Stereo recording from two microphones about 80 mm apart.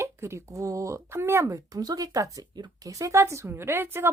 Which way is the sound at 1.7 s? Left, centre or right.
Right.